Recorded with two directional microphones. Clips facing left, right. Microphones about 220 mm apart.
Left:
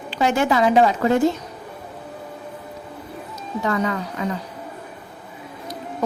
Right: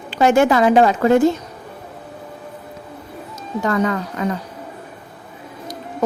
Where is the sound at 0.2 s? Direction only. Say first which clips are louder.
Right 5 dB; 50° right (ahead or behind).